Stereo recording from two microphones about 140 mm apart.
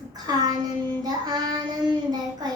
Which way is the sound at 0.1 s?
30° right (ahead or behind).